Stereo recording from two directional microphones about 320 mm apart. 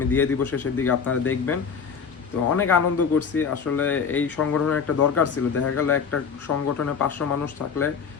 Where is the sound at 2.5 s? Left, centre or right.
Left.